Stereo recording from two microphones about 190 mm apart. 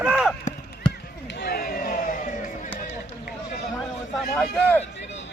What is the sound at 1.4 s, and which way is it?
Vehicle, 55° left (ahead or behind).